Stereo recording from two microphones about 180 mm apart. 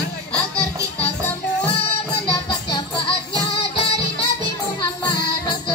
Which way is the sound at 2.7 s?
30° left (ahead or behind).